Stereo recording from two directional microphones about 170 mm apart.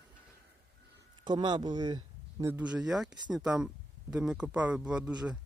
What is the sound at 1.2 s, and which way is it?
Speech, 25° right (ahead or behind).